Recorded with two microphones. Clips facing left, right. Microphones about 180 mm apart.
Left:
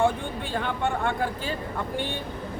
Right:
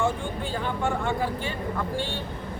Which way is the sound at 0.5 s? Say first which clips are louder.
Left 1 dB; 65° left (ahead or behind).